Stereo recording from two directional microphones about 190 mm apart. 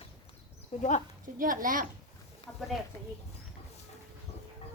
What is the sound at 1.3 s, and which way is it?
Speech, 45° right (ahead or behind).